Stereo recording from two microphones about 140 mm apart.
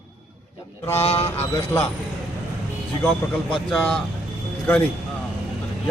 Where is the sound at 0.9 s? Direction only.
45° left (ahead or behind).